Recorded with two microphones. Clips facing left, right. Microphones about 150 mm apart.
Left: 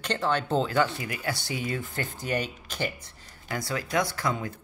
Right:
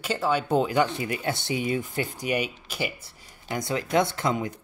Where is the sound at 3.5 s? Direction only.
20° right (ahead or behind).